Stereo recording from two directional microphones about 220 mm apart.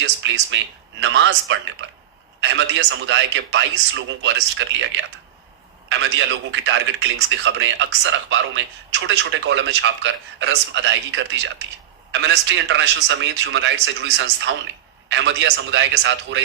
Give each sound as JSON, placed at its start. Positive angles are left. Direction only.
{"t": 0.0, "sound": "a man's voice", "side_deg": -55}